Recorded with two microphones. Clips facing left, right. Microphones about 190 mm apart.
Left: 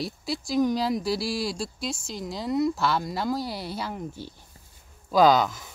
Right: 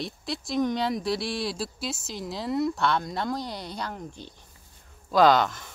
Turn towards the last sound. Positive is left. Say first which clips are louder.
# even
turn(degrees=0)  # may be behind; listen again after turning